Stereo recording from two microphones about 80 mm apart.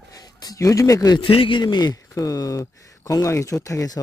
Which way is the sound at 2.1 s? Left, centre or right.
Left.